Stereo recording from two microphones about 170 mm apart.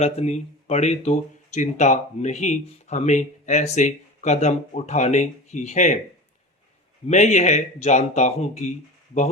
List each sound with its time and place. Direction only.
0.0 s speech: 40° left (ahead or behind)
7.1 s speech: 45° left (ahead or behind)